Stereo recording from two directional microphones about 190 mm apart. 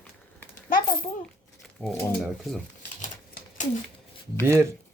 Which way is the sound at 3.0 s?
40° left (ahead or behind).